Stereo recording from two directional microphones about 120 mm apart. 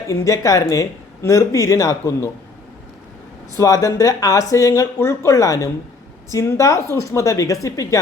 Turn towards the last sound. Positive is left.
turn(degrees=25)  # may be behind; listen again after turning